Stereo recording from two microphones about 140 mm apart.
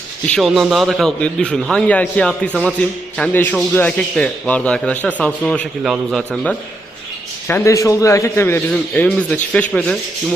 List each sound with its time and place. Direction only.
0.3 s a man's voice: centre (ahead or behind)
7.4 s a man's voice: 20° left (ahead or behind)
8.7 s a man's voice: 5° left (ahead or behind)